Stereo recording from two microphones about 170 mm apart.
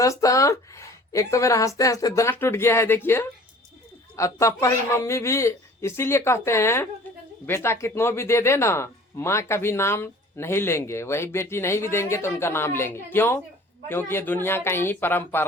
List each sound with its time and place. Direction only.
0.0 s speech: 20° left (ahead or behind)